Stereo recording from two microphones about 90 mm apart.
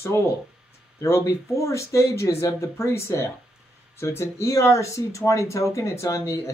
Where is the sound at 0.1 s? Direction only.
30° left (ahead or behind).